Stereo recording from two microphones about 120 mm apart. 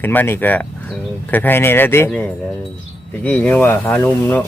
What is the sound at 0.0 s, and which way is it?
Speech, 15° left (ahead or behind).